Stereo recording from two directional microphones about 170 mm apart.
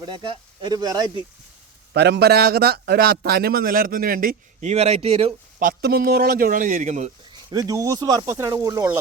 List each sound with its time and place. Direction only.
0.0 s speech: 25° right (ahead or behind)
1.9 s a man's voice: 75° right (ahead or behind); by 4.7 s 55° right (ahead or behind)
4.7 s speech: 40° right (ahead or behind)
5.5 s a man's voice: 60° right (ahead or behind); by 7.1 s 45° right (ahead or behind)
7.5 s speech: 20° right (ahead or behind)